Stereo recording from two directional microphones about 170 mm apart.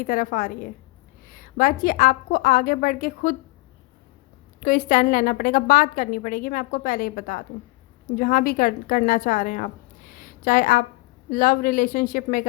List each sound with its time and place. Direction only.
0.0 s a woman's voice: 55° left (ahead or behind)
4.6 s a woman's voice: 55° left (ahead or behind)
10.1 s a sound: 55° left (ahead or behind)
11.3 s a woman's voice: 55° left (ahead or behind)